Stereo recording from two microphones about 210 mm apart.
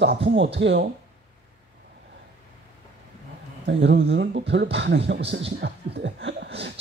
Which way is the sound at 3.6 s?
60° right (ahead or behind).